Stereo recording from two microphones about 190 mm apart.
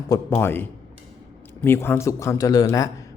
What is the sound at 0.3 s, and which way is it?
A man's voice, 10° left (ahead or behind).